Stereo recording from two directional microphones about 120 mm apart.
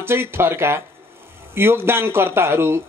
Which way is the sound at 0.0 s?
20° right (ahead or behind).